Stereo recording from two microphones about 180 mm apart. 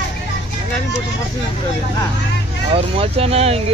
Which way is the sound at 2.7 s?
30° right (ahead or behind).